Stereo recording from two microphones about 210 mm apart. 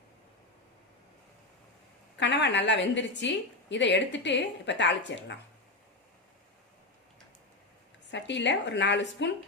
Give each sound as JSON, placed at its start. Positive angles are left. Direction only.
{"t": 2.1, "sound": "a woman's voice", "side_deg": 55}
{"t": 8.1, "sound": "a woman's voice", "side_deg": 55}